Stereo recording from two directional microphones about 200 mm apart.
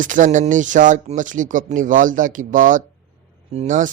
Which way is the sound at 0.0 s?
40° right (ahead or behind).